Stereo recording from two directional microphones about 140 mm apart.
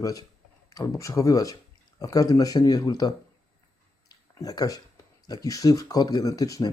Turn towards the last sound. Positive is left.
turn(degrees=25)  # may be behind; listen again after turning